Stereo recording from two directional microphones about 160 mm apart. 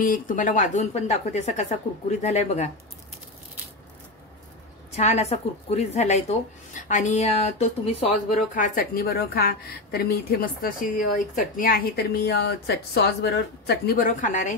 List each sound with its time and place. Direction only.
0.0 s speech: 55° left (ahead or behind)
4.9 s speech: 40° left (ahead or behind)
8.5 s a woman's voice: 60° left (ahead or behind)